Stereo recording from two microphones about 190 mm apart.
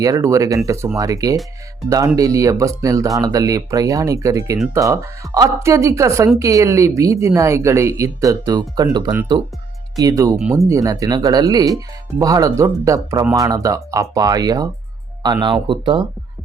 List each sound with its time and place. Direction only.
0.0 s speech: 15° right (ahead or behind)